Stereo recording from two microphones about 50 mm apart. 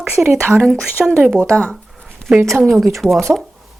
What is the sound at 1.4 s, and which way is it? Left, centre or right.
Speech, centre.